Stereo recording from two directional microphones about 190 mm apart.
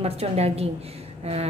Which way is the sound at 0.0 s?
30° right (ahead or behind).